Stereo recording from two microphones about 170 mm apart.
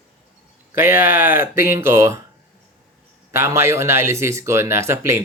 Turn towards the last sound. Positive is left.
turn(degrees=-15)  # may be behind; listen again after turning